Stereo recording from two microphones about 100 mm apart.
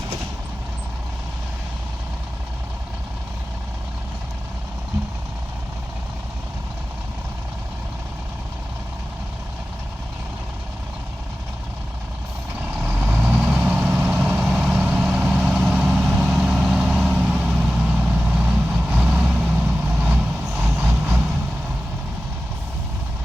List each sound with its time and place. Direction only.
12.7 s vehicle: 20° right (ahead or behind)